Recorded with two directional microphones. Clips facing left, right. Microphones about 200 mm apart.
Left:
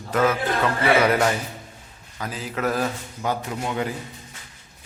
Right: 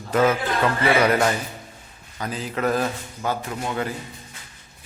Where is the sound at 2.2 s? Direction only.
5° left (ahead or behind).